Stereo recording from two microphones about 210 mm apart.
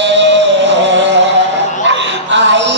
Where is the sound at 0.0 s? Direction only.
60° right (ahead or behind).